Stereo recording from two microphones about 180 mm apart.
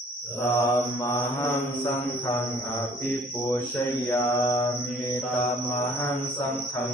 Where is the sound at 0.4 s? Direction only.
15° left (ahead or behind).